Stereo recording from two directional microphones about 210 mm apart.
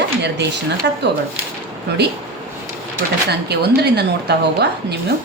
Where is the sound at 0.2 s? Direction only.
55° right (ahead or behind).